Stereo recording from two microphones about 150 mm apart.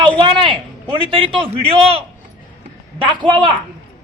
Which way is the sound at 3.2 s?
30° right (ahead or behind).